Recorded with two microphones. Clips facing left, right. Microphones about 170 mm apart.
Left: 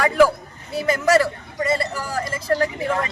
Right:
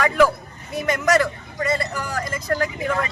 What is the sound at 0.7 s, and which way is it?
Speech, 30° left (ahead or behind).